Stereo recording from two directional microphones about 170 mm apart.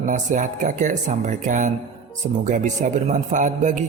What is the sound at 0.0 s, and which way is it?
A man's voice, 45° right (ahead or behind).